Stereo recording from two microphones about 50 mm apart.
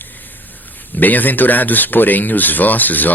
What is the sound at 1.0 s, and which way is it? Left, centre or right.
Speech, left.